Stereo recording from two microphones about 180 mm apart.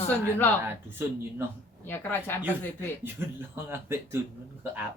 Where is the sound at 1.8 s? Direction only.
10° left (ahead or behind).